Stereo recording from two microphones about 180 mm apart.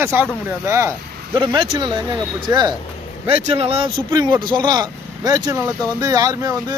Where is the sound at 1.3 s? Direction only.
25° right (ahead or behind).